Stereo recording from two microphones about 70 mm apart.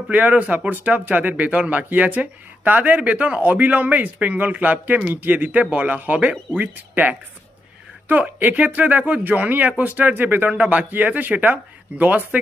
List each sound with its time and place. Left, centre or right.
0.1 s speech: centre